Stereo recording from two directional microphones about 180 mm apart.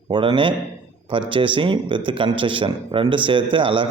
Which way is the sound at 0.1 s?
25° right (ahead or behind).